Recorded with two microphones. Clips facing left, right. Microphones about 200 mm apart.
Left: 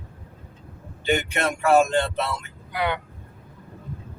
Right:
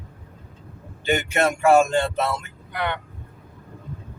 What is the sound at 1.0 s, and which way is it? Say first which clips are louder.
Speech: right 2 dB; 45° right (ahead or behind).